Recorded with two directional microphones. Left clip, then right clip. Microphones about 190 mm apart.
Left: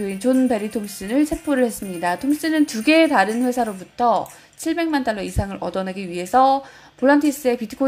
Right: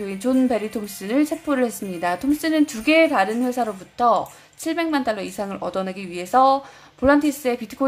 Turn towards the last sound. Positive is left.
turn(degrees=5)  # may be behind; listen again after turning